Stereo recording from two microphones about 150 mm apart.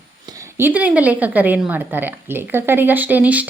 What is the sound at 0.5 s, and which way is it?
A woman's voice, 10° right (ahead or behind).